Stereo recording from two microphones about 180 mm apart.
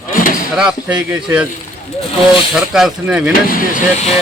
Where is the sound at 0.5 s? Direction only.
5° right (ahead or behind).